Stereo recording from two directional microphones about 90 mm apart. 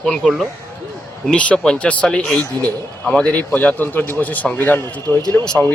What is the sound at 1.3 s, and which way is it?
A man's voice, 10° left (ahead or behind).